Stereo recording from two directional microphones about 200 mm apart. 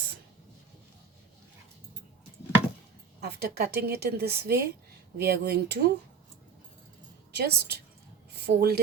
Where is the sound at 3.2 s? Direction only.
55° right (ahead or behind).